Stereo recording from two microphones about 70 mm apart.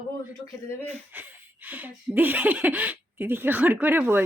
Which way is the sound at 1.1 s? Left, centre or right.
Right.